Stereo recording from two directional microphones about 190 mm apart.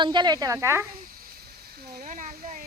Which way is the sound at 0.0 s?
25° right (ahead or behind).